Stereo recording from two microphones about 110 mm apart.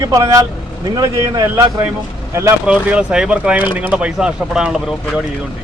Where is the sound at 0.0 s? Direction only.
35° right (ahead or behind).